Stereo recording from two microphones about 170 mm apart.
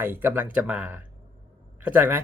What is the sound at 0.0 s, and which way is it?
Speech, 15° right (ahead or behind).